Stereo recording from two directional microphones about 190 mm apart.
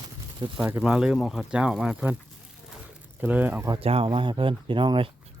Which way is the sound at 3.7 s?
30° right (ahead or behind).